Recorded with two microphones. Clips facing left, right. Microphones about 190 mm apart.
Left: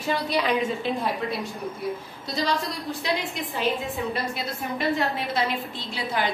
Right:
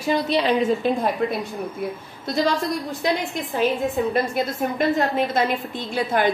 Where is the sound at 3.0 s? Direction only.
50° right (ahead or behind).